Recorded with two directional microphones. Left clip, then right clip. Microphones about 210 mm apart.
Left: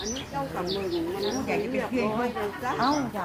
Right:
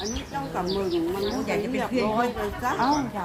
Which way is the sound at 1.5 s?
45° right (ahead or behind).